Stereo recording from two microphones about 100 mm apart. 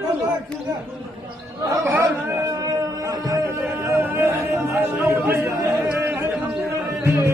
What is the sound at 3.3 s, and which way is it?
Speech, 30° right (ahead or behind).